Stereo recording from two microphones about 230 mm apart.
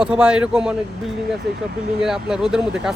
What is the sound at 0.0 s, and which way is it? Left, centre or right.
Speech, centre.